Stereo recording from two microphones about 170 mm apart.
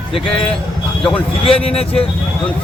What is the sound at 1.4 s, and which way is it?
Speech, 35° left (ahead or behind).